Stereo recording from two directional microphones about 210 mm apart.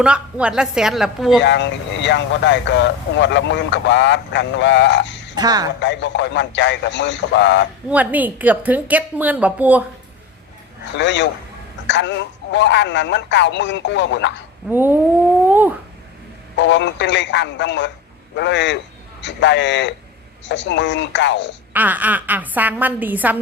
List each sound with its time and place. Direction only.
0.0 s a woman's voice: 5° right (ahead or behind)
1.4 s speech: 55° left (ahead or behind)
5.3 s speech: 20° right (ahead or behind)
5.8 s speech: 60° left (ahead or behind)
7.9 s a woman's voice: 5° right (ahead or behind)
10.9 s speech: 60° left (ahead or behind)
14.7 s a woman's voice: 10° right (ahead or behind)
16.6 s speech: 60° left (ahead or behind)
21.7 s a woman's voice: 10° right (ahead or behind)